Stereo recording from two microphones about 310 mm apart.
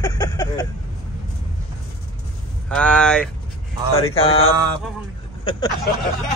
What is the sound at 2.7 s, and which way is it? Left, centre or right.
Speech, centre.